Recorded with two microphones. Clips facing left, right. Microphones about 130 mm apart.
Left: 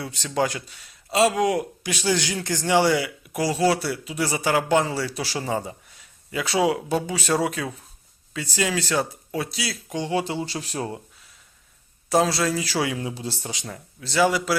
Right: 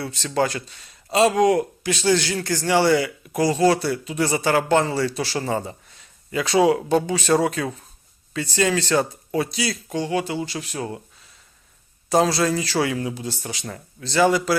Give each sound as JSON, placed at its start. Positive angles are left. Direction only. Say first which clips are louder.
{"t": 0.0, "sound": "speech", "louder": "right 2 dB", "side_deg": 15}
{"t": 9.9, "sound": "speech", "louder": "even", "side_deg": 20}
{"t": 12.0, "sound": "speech", "louder": "right 2 dB", "side_deg": 0}
{"t": 13.7, "sound": "speech", "louder": "right 3 dB", "side_deg": 5}